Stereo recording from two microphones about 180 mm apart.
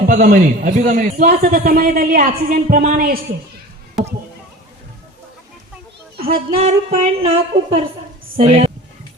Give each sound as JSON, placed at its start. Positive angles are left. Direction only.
{"t": 0.1, "sound": "a man's voice", "side_deg": -50}
{"t": 6.3, "sound": "a woman's voice", "side_deg": -45}